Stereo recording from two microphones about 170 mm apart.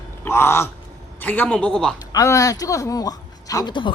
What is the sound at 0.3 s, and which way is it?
Speech, 15° left (ahead or behind).